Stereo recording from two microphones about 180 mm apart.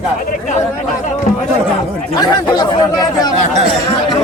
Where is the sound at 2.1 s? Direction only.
25° left (ahead or behind).